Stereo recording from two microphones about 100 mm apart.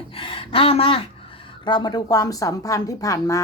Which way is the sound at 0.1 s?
65° left (ahead or behind).